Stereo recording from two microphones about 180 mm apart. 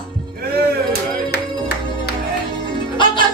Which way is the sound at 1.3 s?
65° left (ahead or behind).